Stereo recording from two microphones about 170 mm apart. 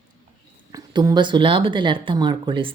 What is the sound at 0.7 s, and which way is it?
Speech, 20° right (ahead or behind).